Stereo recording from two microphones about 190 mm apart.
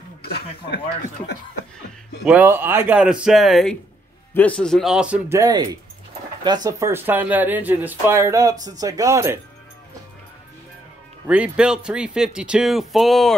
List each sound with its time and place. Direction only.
2.2 s speech: 10° right (ahead or behind)
5.4 s speech: 20° right (ahead or behind)
11.2 s speech: 5° right (ahead or behind)